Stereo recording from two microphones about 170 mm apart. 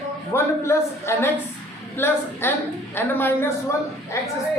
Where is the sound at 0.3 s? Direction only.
15° left (ahead or behind).